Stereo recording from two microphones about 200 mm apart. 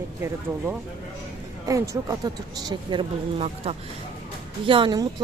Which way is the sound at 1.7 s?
15° right (ahead or behind).